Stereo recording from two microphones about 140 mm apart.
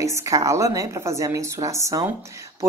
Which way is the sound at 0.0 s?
20° right (ahead or behind).